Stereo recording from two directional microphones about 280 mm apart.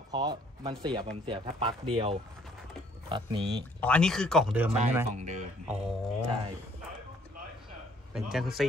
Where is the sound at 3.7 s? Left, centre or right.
Centre.